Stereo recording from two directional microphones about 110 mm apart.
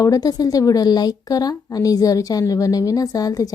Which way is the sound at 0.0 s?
35° left (ahead or behind).